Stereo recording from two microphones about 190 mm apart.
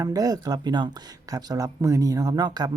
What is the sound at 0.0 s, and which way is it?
Speech, 20° right (ahead or behind).